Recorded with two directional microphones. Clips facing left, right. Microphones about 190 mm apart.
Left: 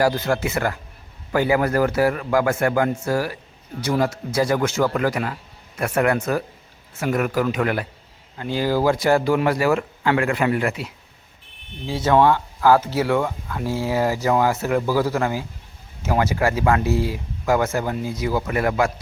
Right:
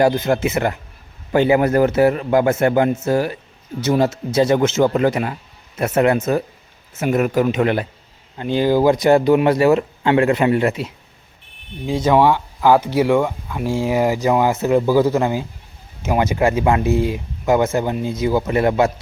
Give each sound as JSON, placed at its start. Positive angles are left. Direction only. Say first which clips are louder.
{"t": 0.0, "sound": "speech", "louder": "right 4 dB", "side_deg": -20}